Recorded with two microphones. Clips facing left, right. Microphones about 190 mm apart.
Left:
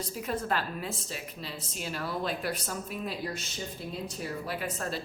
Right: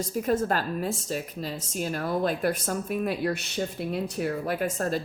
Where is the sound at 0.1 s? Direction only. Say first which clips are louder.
Right 7 dB; 45° right (ahead or behind).